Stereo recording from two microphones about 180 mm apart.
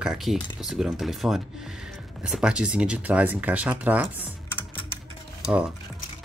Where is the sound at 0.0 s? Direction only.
Centre (ahead or behind).